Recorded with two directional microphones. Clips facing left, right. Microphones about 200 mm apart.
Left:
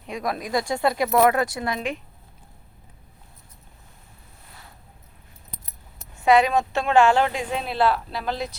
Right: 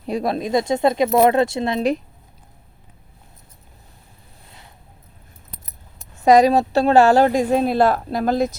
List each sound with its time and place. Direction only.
0.0 s speech: 30° right (ahead or behind)
6.1 s a woman's voice: 40° right (ahead or behind)